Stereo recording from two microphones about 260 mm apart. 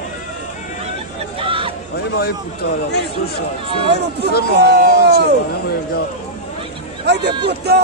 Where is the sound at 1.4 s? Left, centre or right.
Right.